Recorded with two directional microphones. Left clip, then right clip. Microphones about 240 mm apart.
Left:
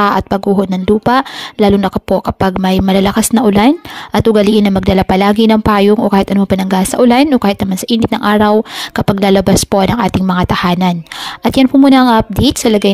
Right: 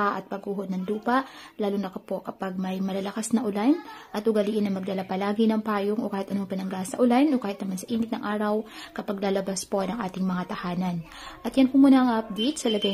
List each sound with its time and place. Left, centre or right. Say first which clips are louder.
0.0 s speech: left 16 dB; left